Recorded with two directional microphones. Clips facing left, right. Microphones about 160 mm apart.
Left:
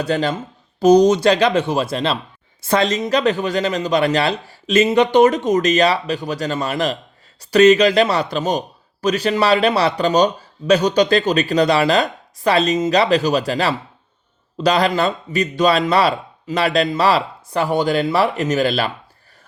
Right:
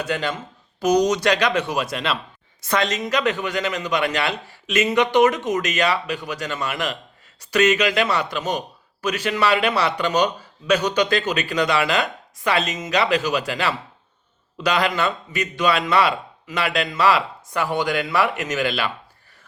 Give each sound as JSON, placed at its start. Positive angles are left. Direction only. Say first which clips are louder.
{"t": 0.0, "sound": "speech", "louder": "left 5 dB", "side_deg": 35}